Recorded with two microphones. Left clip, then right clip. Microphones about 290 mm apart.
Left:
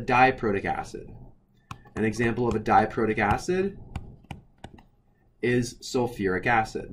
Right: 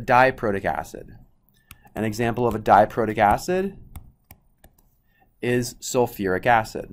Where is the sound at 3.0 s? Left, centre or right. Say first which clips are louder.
Right 6 dB; right.